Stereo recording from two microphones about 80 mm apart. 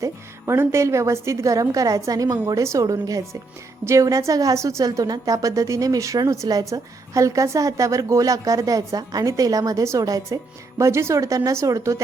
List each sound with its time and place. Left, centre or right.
0.0 s a woman's voice: right